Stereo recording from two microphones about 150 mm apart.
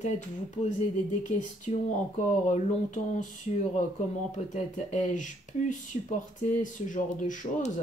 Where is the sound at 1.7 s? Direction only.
45° left (ahead or behind).